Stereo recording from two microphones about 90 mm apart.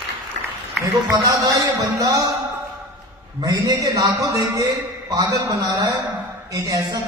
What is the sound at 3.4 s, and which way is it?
A man's voice, 45° right (ahead or behind).